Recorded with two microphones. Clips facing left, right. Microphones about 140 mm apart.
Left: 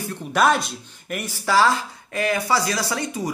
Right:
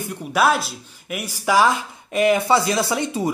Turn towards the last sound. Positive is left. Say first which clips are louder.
# right 4 dB
turn(degrees=-25)  # may be behind; listen again after turning